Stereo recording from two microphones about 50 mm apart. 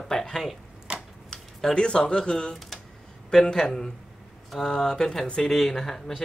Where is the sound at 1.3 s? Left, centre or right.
Centre.